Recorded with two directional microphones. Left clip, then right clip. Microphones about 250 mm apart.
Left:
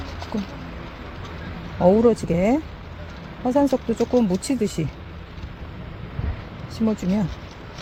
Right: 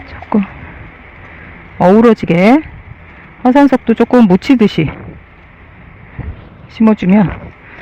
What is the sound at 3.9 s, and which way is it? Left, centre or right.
Speech, right.